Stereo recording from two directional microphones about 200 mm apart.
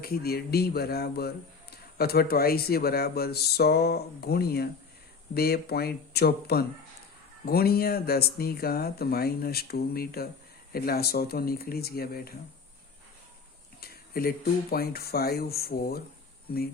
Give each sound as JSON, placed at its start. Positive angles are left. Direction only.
{"t": 0.0, "sound": "speech", "side_deg": 50}
{"t": 13.8, "sound": "speech", "side_deg": 50}